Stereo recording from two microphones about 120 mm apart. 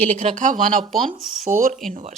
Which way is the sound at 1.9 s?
85° right.